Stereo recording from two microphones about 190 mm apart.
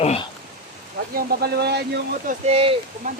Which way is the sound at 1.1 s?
50° right (ahead or behind).